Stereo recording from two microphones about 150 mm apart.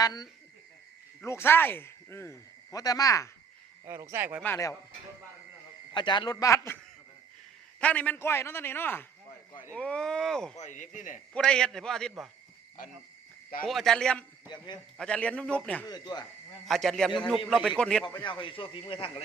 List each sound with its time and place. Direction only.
0.0 s a man's voice: 25° left (ahead or behind)
3.8 s speech: 20° right (ahead or behind)
4.4 s a man's voice: 15° left (ahead or behind)
5.9 s a man's voice: 30° left (ahead or behind)
7.8 s a man's voice: 10° left (ahead or behind)
10.6 s speech: 55° left (ahead or behind)
11.3 s a man's voice: 5° left (ahead or behind)
13.7 s a man's voice: centre (ahead or behind)
14.5 s a man's voice: 30° left (ahead or behind)
14.9 s a man's voice: 5° left (ahead or behind)
15.9 s a man's voice: 25° left (ahead or behind)
16.6 s a man's voice: centre (ahead or behind)
18.0 s a man's voice: 30° left (ahead or behind)